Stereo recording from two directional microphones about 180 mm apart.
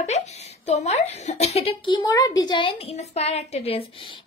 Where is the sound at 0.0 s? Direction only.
40° left (ahead or behind).